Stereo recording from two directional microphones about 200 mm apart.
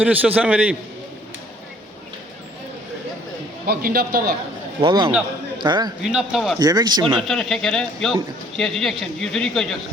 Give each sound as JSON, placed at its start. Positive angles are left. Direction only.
{"t": 0.0, "sound": "a man's voice", "side_deg": -10}
{"t": 3.7, "sound": "a man's voice", "side_deg": -50}
{"t": 4.8, "sound": "a man's voice", "side_deg": -25}
{"t": 6.0, "sound": "speech", "side_deg": -5}
{"t": 6.6, "sound": "speech", "side_deg": -20}
{"t": 7.2, "sound": "speech", "side_deg": 0}